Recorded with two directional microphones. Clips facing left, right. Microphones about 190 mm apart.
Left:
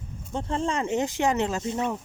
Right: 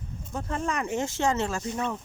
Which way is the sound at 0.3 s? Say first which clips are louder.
Left 3 dB; 30° left (ahead or behind).